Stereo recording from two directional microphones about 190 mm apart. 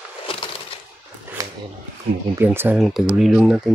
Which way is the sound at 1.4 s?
20° right (ahead or behind).